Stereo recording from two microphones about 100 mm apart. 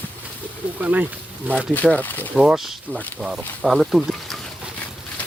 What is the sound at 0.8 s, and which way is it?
Speech, 20° right (ahead or behind).